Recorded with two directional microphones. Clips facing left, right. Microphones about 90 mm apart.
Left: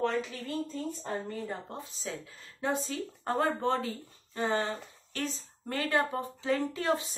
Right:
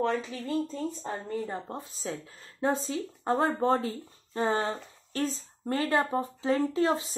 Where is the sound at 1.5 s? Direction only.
30° right (ahead or behind).